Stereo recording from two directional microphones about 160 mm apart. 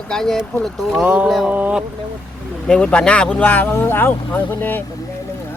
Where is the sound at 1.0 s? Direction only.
10° right (ahead or behind).